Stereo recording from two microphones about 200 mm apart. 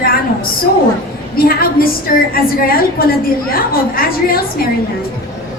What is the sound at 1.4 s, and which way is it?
A woman's voice, 45° left (ahead or behind).